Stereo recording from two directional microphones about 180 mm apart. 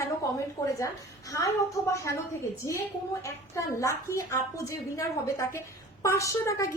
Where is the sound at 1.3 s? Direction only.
15° left (ahead or behind).